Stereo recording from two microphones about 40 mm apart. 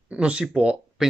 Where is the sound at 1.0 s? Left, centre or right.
Centre.